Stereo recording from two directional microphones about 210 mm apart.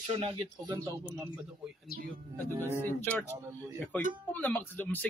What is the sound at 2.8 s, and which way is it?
Speech, 10° left (ahead or behind).